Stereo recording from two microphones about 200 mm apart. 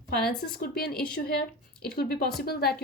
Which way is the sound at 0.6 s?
50° left (ahead or behind).